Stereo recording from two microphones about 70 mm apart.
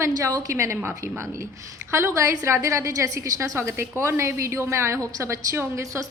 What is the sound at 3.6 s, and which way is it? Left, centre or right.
A woman's voice, right.